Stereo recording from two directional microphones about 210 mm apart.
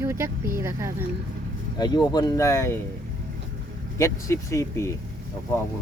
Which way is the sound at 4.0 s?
15° left (ahead or behind).